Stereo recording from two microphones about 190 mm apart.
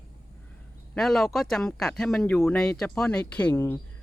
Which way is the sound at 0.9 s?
Centre (ahead or behind).